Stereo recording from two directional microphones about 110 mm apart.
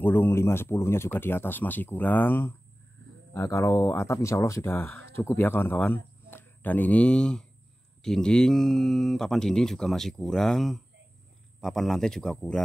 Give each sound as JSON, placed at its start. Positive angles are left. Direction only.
{"t": 0.0, "sound": "speech", "side_deg": 20}